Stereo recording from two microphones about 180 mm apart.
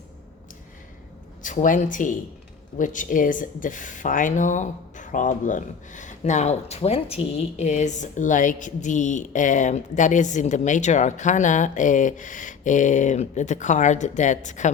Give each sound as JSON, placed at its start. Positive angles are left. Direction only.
{"t": 1.4, "sound": "speech", "side_deg": 45}